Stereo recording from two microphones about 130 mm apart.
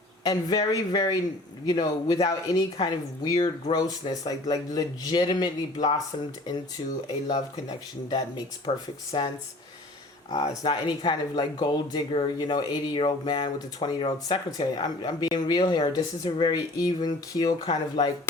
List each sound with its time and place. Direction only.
0.3 s speech: 30° left (ahead or behind)
8.7 s speech: 45° left (ahead or behind)
9.1 s speech: 35° left (ahead or behind)